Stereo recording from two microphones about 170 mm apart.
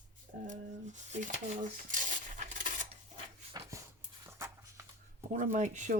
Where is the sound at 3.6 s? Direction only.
25° right (ahead or behind).